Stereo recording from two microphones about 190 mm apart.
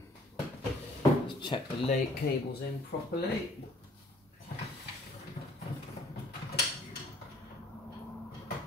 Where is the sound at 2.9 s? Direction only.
60° left (ahead or behind).